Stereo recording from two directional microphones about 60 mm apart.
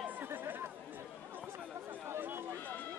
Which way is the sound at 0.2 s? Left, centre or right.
Right.